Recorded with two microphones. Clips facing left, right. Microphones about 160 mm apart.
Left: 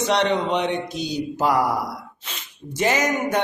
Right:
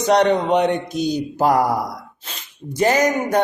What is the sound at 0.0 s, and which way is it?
Mantra, 45° right (ahead or behind).